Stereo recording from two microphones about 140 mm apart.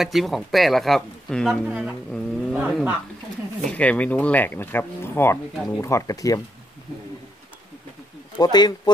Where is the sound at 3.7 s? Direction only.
10° left (ahead or behind).